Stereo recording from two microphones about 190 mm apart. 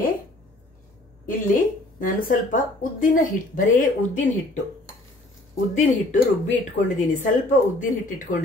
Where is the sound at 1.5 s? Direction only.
45° left (ahead or behind).